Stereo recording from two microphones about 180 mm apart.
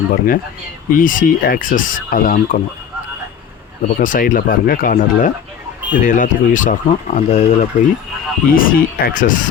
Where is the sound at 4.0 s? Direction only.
50° left (ahead or behind).